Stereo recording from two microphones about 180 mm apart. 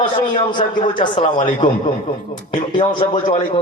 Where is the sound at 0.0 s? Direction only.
30° left (ahead or behind).